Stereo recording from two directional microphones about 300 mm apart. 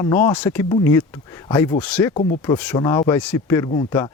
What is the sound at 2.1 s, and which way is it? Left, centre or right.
Speech, left.